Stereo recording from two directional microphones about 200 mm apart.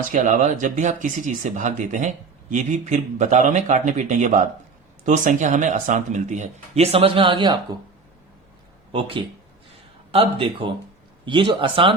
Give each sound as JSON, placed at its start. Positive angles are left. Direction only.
{"t": 0.1, "sound": "speech", "side_deg": -40}
{"t": 8.9, "sound": "speech", "side_deg": -25}